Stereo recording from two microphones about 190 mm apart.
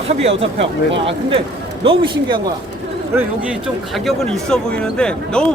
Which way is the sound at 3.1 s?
10° right (ahead or behind).